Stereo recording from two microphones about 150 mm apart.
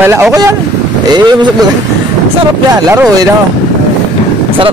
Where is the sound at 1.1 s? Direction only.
30° right (ahead or behind).